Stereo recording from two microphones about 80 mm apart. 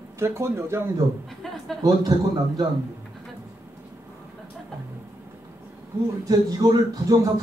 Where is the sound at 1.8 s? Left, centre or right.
Right.